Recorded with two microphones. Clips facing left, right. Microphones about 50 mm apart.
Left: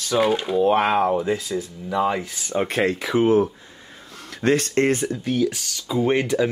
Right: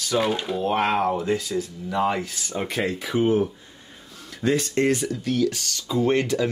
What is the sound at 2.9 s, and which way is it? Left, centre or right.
Speech, left.